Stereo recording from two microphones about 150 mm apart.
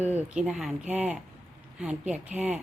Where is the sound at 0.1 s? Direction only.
5° right (ahead or behind).